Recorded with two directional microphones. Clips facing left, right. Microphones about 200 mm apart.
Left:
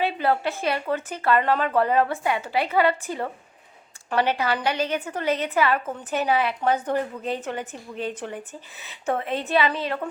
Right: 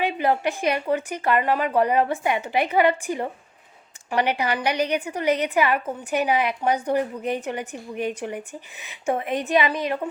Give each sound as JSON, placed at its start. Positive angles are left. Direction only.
{"t": 0.0, "sound": "a woman's voice", "side_deg": -15}